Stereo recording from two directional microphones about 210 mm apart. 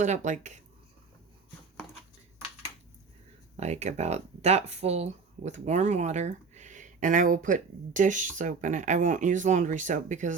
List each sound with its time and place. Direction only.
0.0 s speech: 35° right (ahead or behind)
3.6 s speech: 30° right (ahead or behind)